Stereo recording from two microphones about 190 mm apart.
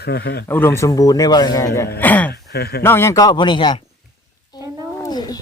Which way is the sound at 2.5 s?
55° left (ahead or behind).